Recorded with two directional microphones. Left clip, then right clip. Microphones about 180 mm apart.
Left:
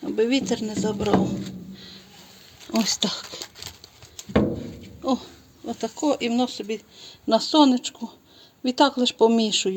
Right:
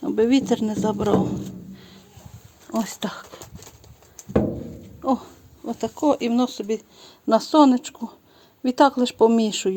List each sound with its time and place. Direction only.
0.0 s speech: 25° right (ahead or behind)
1.7 s a sound: 10° right (ahead or behind)
2.6 s speech: 5° left (ahead or behind)
5.0 s speech: 10° right (ahead or behind)
7.3 s speech: 10° right (ahead or behind)